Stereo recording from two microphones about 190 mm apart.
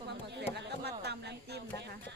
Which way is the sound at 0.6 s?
60° right (ahead or behind).